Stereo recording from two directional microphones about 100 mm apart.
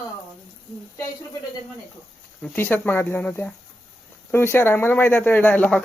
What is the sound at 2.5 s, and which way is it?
Speech, 20° left (ahead or behind).